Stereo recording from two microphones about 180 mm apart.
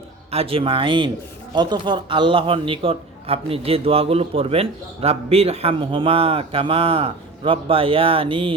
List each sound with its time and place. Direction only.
0.3 s a man's voice: 35° right (ahead or behind)